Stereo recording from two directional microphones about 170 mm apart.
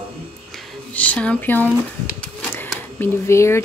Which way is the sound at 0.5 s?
10° left (ahead or behind).